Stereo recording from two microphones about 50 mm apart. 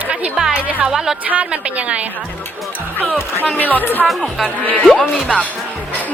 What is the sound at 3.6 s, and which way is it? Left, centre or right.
Speech, left.